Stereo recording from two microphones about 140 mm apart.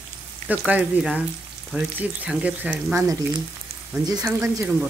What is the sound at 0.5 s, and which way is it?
Speech, 10° right (ahead or behind).